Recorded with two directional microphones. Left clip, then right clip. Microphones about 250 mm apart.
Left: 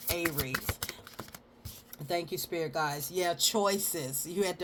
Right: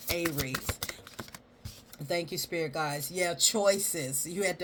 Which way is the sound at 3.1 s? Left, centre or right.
Left.